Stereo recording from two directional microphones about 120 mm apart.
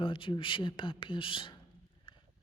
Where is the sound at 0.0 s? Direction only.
45° left (ahead or behind).